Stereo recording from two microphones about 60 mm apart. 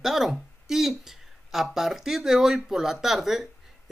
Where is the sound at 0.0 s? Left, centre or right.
Centre.